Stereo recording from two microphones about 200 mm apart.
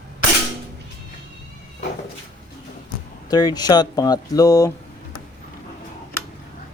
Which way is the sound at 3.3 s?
20° left (ahead or behind).